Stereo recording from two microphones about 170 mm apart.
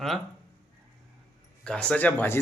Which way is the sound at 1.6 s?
5° left (ahead or behind).